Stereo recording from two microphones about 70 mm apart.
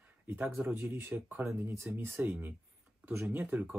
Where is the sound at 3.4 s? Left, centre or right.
Right.